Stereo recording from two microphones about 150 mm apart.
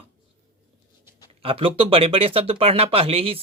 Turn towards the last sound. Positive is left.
turn(degrees=-40)  # may be behind; listen again after turning